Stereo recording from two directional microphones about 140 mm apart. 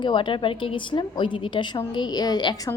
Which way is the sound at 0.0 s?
35° left (ahead or behind).